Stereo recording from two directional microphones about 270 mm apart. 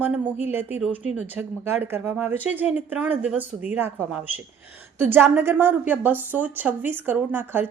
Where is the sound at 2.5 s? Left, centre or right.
Centre.